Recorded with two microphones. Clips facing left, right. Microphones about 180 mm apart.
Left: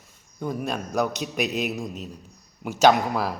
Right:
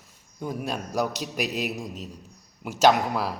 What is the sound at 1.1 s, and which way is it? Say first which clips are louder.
Speech: left 3 dB; 55° left (ahead or behind).